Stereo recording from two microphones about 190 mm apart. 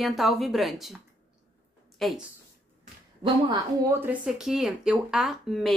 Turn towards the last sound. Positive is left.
turn(degrees=0)  # may be behind; listen again after turning